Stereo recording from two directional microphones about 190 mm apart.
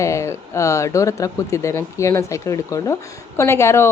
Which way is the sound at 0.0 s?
15° left (ahead or behind).